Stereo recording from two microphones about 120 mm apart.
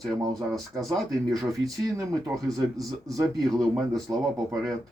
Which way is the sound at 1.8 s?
25° right (ahead or behind).